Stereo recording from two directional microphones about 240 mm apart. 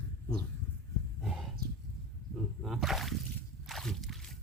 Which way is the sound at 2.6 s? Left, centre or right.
Centre.